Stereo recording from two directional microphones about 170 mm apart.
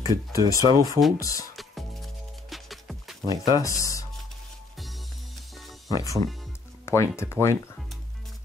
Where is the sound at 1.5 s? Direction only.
Centre (ahead or behind).